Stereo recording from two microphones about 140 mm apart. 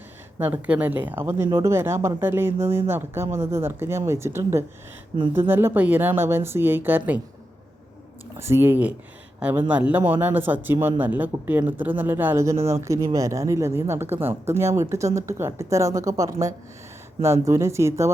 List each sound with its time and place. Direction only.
0.3 s speech: 15° right (ahead or behind)
8.4 s speech: 20° right (ahead or behind)